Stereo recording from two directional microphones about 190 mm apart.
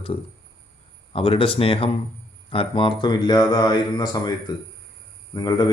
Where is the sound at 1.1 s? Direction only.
30° left (ahead or behind).